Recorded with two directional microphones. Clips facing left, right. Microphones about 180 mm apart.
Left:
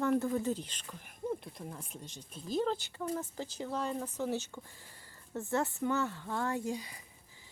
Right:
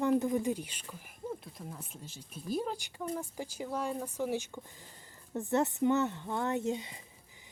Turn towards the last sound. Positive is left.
turn(degrees=-25)  # may be behind; listen again after turning